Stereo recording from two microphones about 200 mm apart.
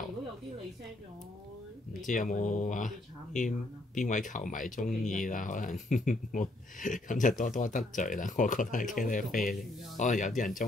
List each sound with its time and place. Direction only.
2.0 s speech: 40° left (ahead or behind)